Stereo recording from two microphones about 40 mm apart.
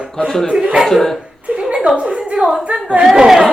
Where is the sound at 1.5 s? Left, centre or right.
Right.